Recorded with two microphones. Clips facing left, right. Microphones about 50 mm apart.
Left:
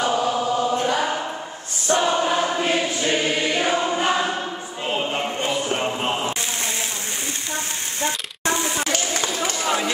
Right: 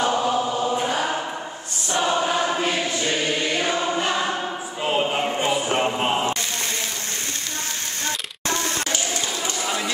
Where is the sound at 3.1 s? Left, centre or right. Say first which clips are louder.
Left 3 dB; centre.